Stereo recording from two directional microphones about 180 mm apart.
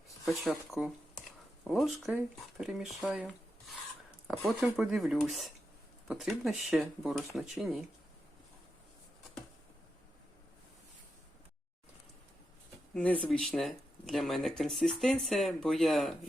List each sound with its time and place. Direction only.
0.3 s speech: centre (ahead or behind)
4.3 s speech: centre (ahead or behind)
12.9 s speech: 5° left (ahead or behind)